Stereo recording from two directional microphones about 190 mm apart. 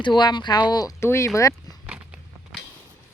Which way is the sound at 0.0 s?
25° left (ahead or behind).